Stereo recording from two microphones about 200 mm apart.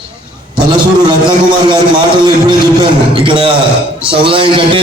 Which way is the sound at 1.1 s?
25° right (ahead or behind).